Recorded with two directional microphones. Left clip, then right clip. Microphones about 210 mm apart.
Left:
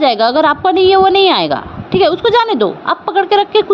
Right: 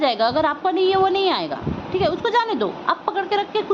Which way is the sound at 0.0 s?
30° left (ahead or behind).